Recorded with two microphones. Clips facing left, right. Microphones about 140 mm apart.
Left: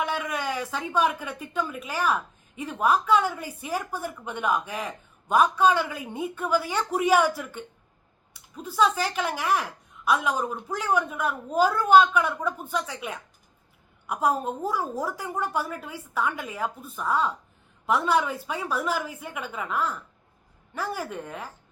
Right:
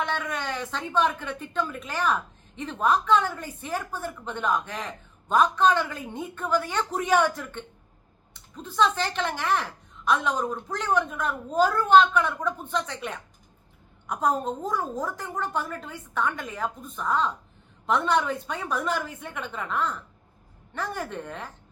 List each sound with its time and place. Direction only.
0.0 s speech: 10° left (ahead or behind)